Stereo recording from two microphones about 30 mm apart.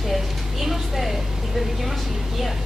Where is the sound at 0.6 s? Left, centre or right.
Centre.